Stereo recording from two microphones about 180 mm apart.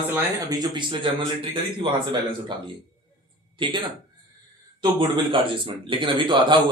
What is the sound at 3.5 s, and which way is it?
Speech, 30° right (ahead or behind).